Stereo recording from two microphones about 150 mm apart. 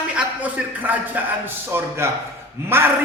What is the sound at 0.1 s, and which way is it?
A man's voice, 10° right (ahead or behind).